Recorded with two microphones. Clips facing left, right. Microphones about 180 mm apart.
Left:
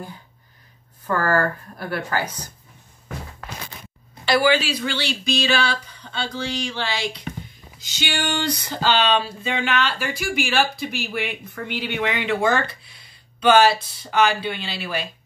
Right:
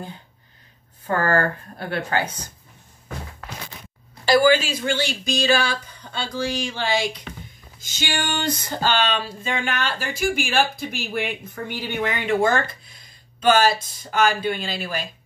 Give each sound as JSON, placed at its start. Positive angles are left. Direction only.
{"t": 1.3, "sound": "speech", "side_deg": -25}
{"t": 4.3, "sound": "speech", "side_deg": -45}